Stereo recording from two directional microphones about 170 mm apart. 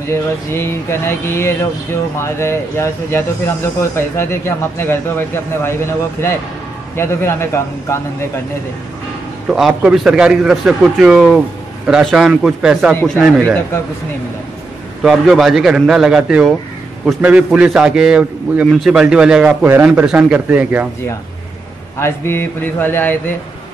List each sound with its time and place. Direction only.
0.1 s speech: 15° left (ahead or behind)
9.5 s a man's voice: centre (ahead or behind)
15.0 s a man's voice: centre (ahead or behind)
22.0 s speech: 15° left (ahead or behind)